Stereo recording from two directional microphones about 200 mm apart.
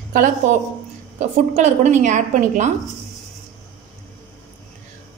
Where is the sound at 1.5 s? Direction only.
35° right (ahead or behind).